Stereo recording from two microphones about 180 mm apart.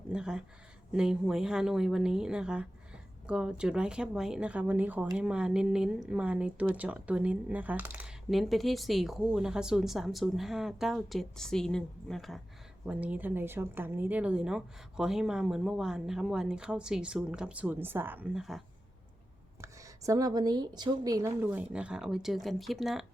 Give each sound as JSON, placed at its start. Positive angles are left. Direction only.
{"t": 0.1, "sound": "speech", "side_deg": -5}
{"t": 19.6, "sound": "speech", "side_deg": -20}